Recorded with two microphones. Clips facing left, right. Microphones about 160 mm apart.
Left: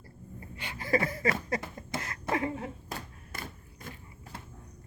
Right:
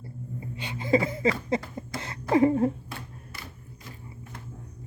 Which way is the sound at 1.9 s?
25° left (ahead or behind).